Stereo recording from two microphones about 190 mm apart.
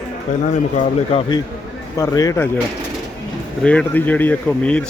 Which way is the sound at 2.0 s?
15° left (ahead or behind).